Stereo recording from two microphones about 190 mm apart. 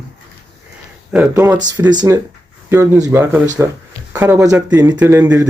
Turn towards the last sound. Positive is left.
turn(degrees=-10)  # may be behind; listen again after turning